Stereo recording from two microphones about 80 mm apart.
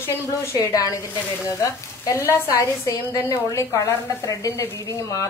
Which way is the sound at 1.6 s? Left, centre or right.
Left.